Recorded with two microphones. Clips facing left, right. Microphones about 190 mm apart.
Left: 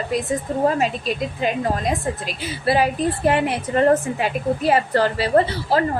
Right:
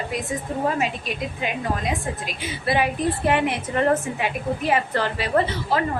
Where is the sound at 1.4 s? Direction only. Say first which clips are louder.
Left 4 dB; 35° left (ahead or behind).